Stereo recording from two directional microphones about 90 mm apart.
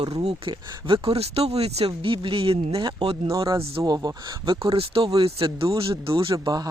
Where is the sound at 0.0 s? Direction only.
55° right (ahead or behind).